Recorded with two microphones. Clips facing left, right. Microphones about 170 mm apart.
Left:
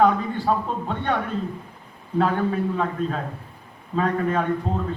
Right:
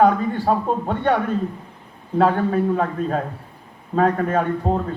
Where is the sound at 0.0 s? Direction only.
45° right (ahead or behind).